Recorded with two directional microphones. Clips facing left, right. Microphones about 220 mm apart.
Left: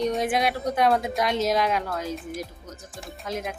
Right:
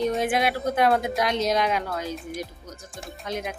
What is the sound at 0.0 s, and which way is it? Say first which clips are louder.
Speech: right 1 dB; centre (ahead or behind).